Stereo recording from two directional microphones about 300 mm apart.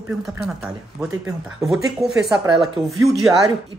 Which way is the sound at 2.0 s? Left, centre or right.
Centre.